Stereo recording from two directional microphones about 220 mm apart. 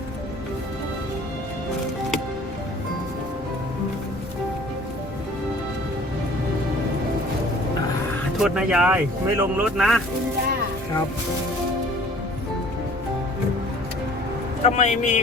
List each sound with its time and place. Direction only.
8.4 s speech: 5° right (ahead or behind)
14.6 s a man's voice: 30° left (ahead or behind)